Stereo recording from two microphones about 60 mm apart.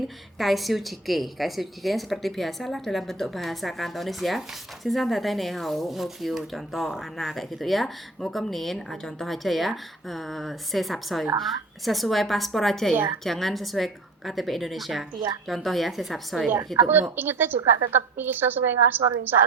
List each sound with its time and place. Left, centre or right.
0.3 s a woman's voice: centre
16.7 s a woman's voice: right